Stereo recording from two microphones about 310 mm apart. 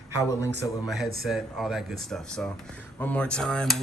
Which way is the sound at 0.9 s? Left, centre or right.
Centre.